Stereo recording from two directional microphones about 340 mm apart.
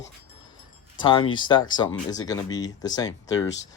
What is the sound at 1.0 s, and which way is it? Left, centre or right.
Speech, centre.